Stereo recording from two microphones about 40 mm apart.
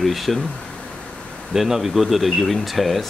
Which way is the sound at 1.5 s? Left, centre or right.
Centre.